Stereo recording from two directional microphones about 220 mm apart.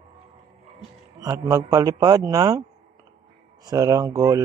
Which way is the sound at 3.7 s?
15° right (ahead or behind).